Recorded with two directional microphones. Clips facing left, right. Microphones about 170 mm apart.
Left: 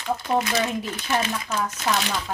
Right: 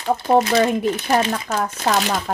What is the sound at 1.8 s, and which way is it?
Speech, 50° right (ahead or behind).